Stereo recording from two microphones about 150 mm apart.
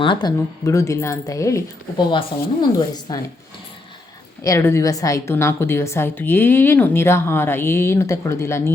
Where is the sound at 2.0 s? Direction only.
30° left (ahead or behind).